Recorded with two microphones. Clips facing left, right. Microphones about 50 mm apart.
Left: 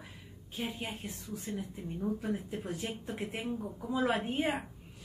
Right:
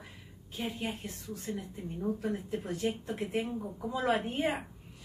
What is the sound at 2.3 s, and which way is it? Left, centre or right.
Speech, centre.